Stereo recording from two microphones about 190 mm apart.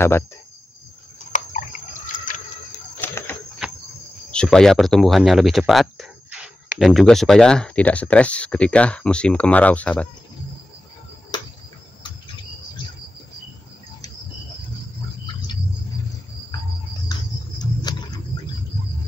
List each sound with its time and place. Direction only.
2.1 s a sound: 45° left (ahead or behind)
3.0 s a sound: 15° left (ahead or behind)
3.6 s cricket: 5° right (ahead or behind)
4.3 s speech: 5° left (ahead or behind)
11.3 s cricket: 25° left (ahead or behind)
17.1 s cricket: 20° left (ahead or behind)